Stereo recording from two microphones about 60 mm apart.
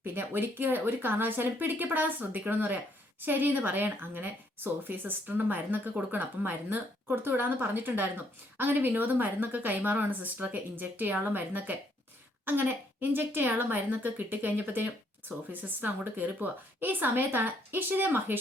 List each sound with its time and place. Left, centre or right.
0.0 s speech: right